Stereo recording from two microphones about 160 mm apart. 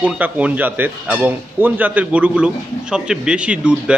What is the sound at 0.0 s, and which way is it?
Speech, 10° right (ahead or behind).